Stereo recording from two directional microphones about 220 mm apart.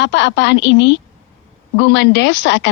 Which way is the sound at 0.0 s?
55° left (ahead or behind).